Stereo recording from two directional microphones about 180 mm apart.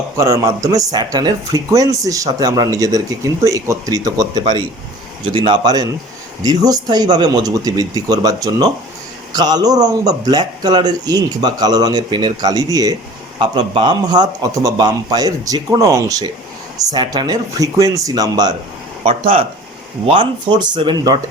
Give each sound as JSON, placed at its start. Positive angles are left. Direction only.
{"t": 0.2, "sound": "speech", "side_deg": -20}